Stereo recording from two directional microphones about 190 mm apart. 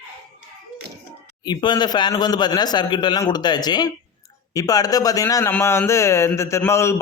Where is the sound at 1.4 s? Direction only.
20° left (ahead or behind).